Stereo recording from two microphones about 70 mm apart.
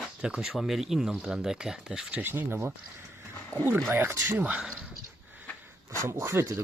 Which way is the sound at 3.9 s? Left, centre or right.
Right.